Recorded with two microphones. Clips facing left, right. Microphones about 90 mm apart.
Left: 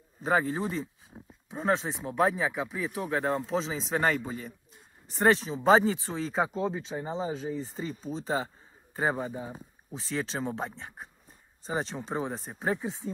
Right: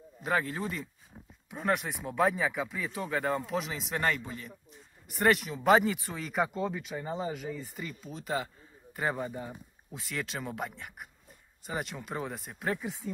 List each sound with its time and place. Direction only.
0.2 s speech: 25° left (ahead or behind)
9.0 s speech: 15° left (ahead or behind)
9.9 s speech: 25° left (ahead or behind)